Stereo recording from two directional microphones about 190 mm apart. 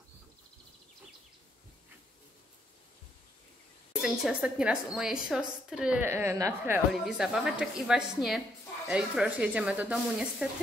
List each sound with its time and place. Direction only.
4.0 s a woman's voice: 5° right (ahead or behind)
6.9 s a woman's voice: centre (ahead or behind)